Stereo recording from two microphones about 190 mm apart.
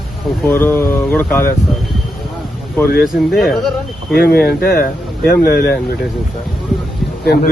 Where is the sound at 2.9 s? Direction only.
55° left (ahead or behind).